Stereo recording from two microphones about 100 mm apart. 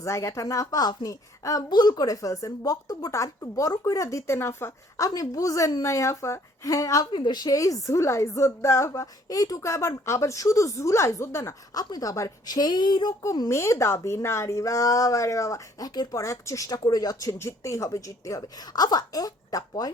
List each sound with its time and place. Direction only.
0.0 s a woman's voice: 30° left (ahead or behind)
7.1 s a woman's voice: 50° left (ahead or behind); by 11.5 s 25° left (ahead or behind)
11.7 s a woman's voice: 40° left (ahead or behind)
13.5 s a woman's voice: 30° left (ahead or behind)